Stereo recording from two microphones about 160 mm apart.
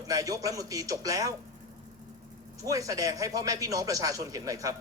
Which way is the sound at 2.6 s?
20° right (ahead or behind).